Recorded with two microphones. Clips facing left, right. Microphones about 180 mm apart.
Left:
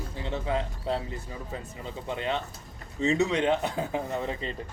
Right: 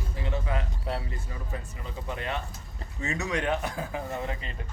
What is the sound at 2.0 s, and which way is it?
Speech, 25° left (ahead or behind).